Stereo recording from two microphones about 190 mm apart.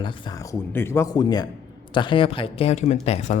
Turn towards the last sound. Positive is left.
turn(degrees=35)  # may be behind; listen again after turning